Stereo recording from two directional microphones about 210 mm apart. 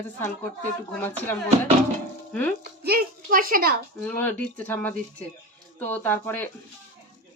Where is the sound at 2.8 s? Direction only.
45° right (ahead or behind).